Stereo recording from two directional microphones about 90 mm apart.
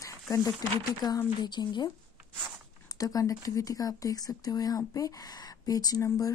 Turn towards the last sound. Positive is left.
turn(degrees=45)  # may be behind; listen again after turning